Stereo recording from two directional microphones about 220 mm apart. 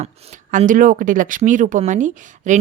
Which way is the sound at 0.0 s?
30° right (ahead or behind).